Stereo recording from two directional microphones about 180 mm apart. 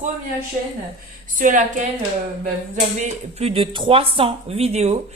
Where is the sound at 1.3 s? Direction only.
45° right (ahead or behind).